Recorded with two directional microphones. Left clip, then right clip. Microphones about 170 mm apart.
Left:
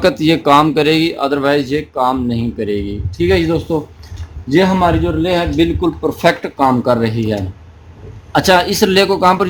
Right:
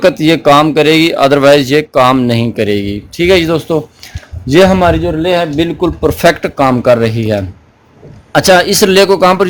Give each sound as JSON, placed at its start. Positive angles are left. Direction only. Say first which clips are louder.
{"t": 0.0, "sound": "a man's voice", "louder": "right 5 dB", "side_deg": -35}